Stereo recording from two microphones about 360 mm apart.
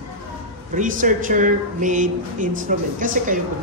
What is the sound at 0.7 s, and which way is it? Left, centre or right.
Speech, right.